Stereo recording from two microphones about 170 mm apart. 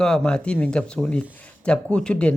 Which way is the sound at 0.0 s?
5° left (ahead or behind).